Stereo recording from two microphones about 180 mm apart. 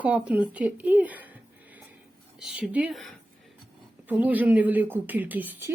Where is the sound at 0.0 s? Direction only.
10° right (ahead or behind).